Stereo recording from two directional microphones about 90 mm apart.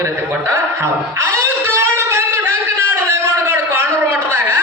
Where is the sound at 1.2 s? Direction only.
30° right (ahead or behind).